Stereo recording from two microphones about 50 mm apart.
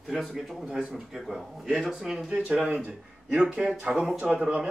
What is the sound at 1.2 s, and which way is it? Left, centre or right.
A man's voice, centre.